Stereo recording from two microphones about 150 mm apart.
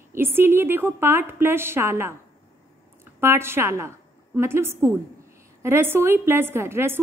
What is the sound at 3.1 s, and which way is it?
A woman's voice, 15° right (ahead or behind).